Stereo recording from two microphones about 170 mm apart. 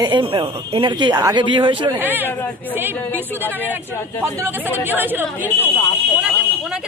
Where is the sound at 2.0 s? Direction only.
10° right (ahead or behind).